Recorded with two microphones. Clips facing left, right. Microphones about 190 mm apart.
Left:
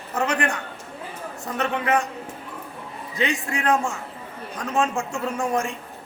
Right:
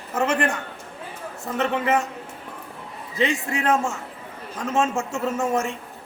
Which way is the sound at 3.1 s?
5° right (ahead or behind).